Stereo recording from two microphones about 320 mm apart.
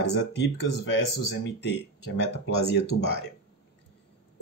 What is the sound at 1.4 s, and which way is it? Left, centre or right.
Speech, left.